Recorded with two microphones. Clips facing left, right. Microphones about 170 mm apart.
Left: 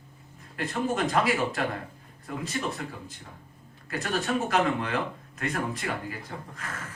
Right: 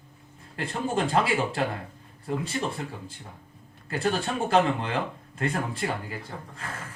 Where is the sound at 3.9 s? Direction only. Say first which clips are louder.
Right 1 dB; 30° right (ahead or behind).